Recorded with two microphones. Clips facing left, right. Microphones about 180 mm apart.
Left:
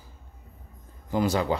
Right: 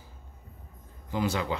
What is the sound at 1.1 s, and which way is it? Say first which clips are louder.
Speech: left 5 dB; 40° left (ahead or behind).